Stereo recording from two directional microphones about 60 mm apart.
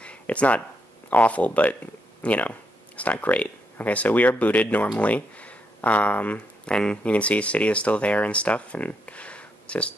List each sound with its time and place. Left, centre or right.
0.0 s a sound: left
1.1 s speech: left
6.7 s speech: centre